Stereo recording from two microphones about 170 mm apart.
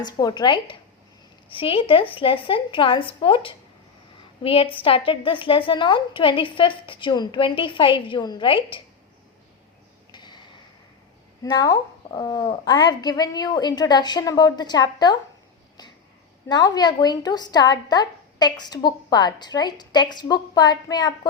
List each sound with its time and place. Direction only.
0.0 s a woman's voice: 25° left (ahead or behind)
10.1 s a sound: 25° left (ahead or behind)
11.4 s a woman's voice: 25° left (ahead or behind)
16.5 s a woman's voice: 25° left (ahead or behind)